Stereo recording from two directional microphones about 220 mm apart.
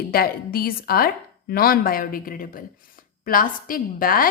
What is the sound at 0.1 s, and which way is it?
A woman's voice, 40° left (ahead or behind).